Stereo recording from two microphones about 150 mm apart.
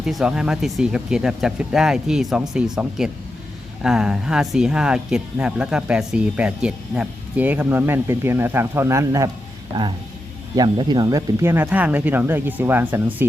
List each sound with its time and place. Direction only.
0.0 s speech: 5° right (ahead or behind)